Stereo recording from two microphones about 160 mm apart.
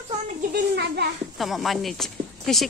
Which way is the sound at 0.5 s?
90° right.